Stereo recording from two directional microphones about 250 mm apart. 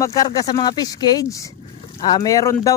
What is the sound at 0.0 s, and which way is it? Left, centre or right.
Speech, centre.